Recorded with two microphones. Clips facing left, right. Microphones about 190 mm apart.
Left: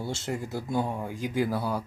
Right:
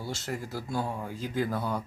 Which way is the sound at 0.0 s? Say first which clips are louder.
Left 3 dB; 20° left (ahead or behind).